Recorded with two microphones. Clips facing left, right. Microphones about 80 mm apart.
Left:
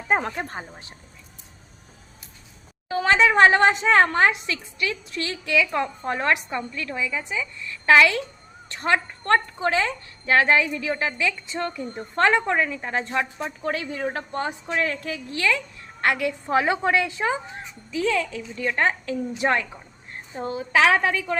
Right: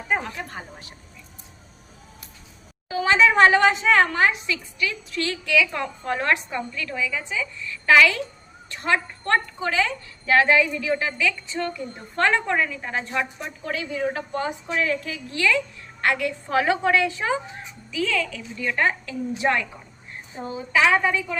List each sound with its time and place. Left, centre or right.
0.1 s speech: left
2.9 s a woman's voice: left
5.7 s a woman's voice: left
7.9 s a woman's voice: left
13.7 s a woman's voice: left
16.0 s a woman's voice: left
20.4 s a woman's voice: left